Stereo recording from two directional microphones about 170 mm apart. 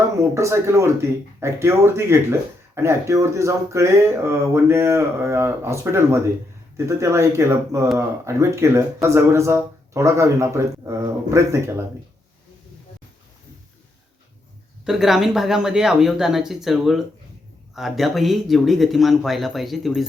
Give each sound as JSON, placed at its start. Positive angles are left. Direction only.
{"t": 0.2, "sound": "speech", "side_deg": -15}
{"t": 14.8, "sound": "speech", "side_deg": 0}